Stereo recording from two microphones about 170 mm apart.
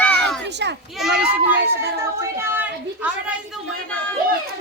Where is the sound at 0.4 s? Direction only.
90° right.